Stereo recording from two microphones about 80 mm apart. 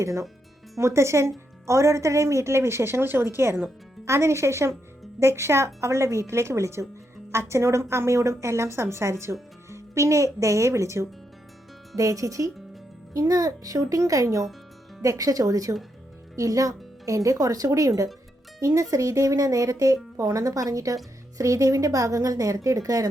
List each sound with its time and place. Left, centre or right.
0.0 s speech: right